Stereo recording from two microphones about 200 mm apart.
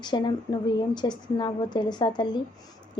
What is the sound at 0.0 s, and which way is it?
Speech, 20° left (ahead or behind).